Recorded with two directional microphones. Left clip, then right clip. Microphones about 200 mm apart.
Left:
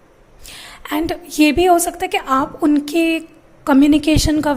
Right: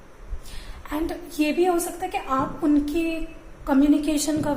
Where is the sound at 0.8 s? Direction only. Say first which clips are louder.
Left 8 dB; 50° left (ahead or behind).